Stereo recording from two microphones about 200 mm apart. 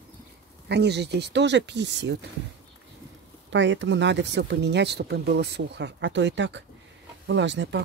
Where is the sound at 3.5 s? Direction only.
65° right (ahead or behind).